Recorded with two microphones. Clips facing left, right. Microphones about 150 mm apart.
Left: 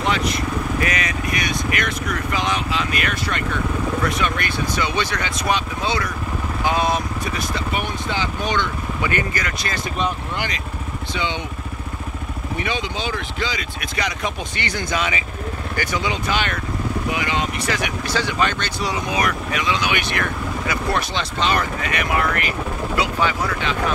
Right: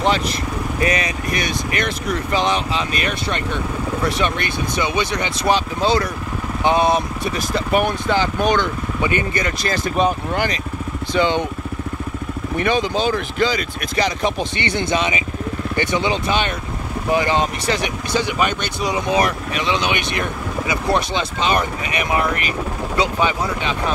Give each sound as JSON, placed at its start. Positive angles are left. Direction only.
{"t": 0.0, "sound": "speech", "side_deg": -30}
{"t": 5.5, "sound": "speech", "side_deg": -35}
{"t": 7.7, "sound": "speech", "side_deg": -50}
{"t": 9.0, "sound": "speech", "side_deg": -25}
{"t": 9.9, "sound": "speech", "side_deg": -45}
{"t": 12.5, "sound": "speech", "side_deg": -50}
{"t": 13.9, "sound": "speech", "side_deg": -30}
{"t": 17.1, "sound": "speech", "side_deg": -35}
{"t": 18.1, "sound": "speech", "side_deg": -15}
{"t": 19.1, "sound": "speech", "side_deg": -30}